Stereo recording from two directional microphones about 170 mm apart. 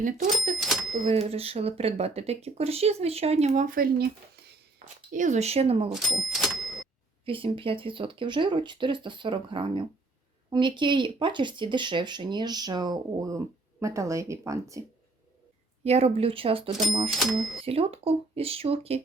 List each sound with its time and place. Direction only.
0.0 s speech: 50° right (ahead or behind)
1.0 s speech: 35° right (ahead or behind); by 4.0 s 55° right (ahead or behind)
4.8 s speech: 40° right (ahead or behind)
5.9 s speech: centre (ahead or behind)
7.3 s speech: 30° right (ahead or behind)
15.8 s speech: 40° right (ahead or behind)
17.2 s speech: centre (ahead or behind)
17.7 s speech: 35° right (ahead or behind)